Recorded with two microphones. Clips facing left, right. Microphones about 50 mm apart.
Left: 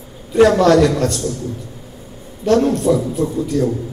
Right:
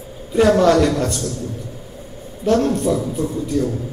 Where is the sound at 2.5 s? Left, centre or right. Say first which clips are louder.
Left 4 dB; centre.